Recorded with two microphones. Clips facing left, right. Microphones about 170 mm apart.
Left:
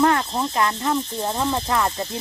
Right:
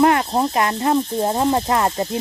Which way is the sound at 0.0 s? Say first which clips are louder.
Right 3 dB; 15° right (ahead or behind).